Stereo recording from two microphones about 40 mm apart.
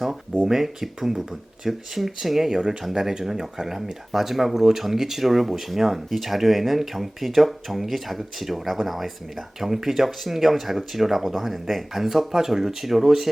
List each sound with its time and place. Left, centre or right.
0.4 s speech: centre